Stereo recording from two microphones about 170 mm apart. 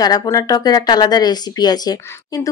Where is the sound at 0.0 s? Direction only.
25° left (ahead or behind).